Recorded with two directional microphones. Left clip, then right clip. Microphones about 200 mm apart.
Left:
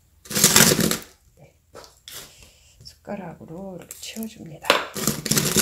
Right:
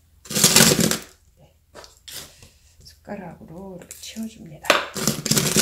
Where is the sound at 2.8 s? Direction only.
45° left (ahead or behind).